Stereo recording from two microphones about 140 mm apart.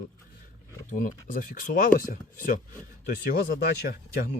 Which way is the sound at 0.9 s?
75° left (ahead or behind).